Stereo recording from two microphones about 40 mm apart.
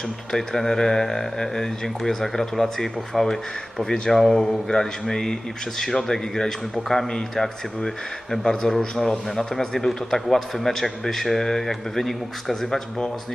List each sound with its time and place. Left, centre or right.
0.3 s speech: centre
4.1 s a man's voice: centre
7.1 s speech: centre